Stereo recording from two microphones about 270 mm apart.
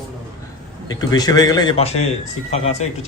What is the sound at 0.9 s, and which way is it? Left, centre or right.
A man's voice, centre.